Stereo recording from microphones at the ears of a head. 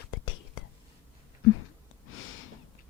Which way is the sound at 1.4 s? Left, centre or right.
Left.